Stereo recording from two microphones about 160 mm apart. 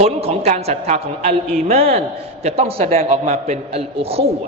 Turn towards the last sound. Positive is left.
turn(degrees=-40)  # may be behind; listen again after turning